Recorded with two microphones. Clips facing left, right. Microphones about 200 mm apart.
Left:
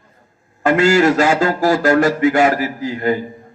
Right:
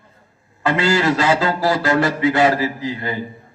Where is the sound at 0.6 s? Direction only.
45° left (ahead or behind).